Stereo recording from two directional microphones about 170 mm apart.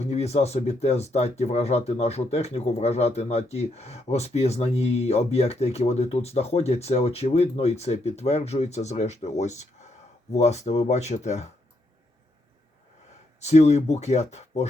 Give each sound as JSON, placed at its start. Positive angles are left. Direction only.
{"t": 0.0, "sound": "speech", "side_deg": 40}
{"t": 13.4, "sound": "speech", "side_deg": 40}